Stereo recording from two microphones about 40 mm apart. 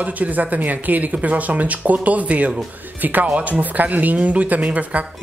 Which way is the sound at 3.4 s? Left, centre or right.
Right.